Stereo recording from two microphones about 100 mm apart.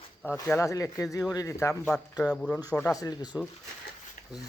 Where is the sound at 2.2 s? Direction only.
5° left (ahead or behind).